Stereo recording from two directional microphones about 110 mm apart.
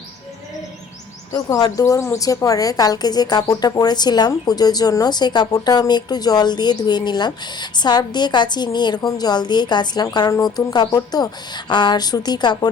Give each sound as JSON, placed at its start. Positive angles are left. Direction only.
{"t": 1.3, "sound": "a woman's voice", "side_deg": 35}